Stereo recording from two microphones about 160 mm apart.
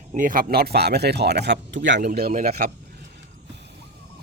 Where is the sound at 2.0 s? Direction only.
65° right (ahead or behind).